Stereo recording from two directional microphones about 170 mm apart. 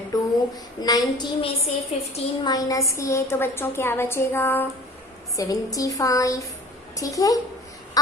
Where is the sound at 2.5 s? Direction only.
20° left (ahead or behind).